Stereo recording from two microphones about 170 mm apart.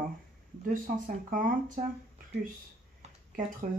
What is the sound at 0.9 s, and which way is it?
Speech, 55° right (ahead or behind).